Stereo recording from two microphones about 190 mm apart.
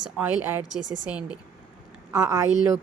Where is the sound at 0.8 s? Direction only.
75° right (ahead or behind).